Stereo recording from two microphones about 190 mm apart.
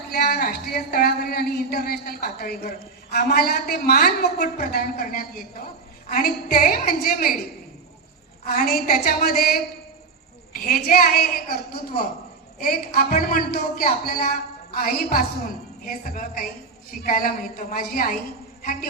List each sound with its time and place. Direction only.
0.1 s speech: 55° left (ahead or behind)
8.6 s speech: 50° left (ahead or behind)
10.5 s a man's voice: 50° left (ahead or behind)